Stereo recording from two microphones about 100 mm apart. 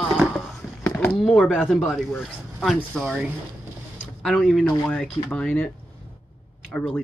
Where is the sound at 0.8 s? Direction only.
15° left (ahead or behind).